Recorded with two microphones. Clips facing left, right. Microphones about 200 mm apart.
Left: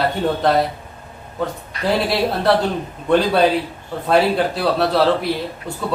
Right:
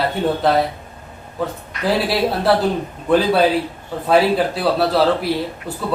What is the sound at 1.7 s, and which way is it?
Speech, 35° left (ahead or behind).